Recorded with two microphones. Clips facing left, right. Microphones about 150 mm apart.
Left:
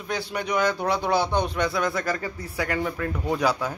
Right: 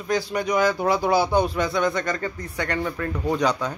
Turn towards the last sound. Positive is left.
turn(degrees=5)  # may be behind; listen again after turning